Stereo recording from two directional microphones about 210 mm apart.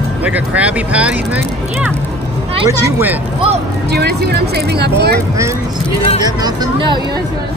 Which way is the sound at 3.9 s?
50° right (ahead or behind).